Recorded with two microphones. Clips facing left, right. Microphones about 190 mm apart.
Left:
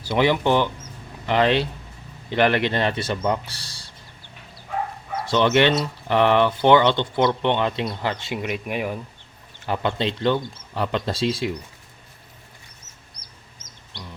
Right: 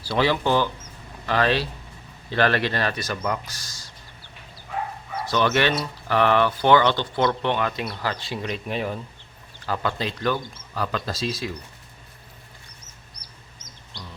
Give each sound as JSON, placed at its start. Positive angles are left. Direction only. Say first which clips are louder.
{"t": 0.0, "sound": "speech", "louder": "left 2 dB", "side_deg": 20}
{"t": 5.3, "sound": "speech", "louder": "left 4 dB", "side_deg": 20}
{"t": 9.6, "sound": "speech", "louder": "left 3 dB", "side_deg": 20}